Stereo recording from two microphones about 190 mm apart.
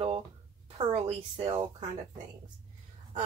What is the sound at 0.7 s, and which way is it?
Speech, 30° right (ahead or behind).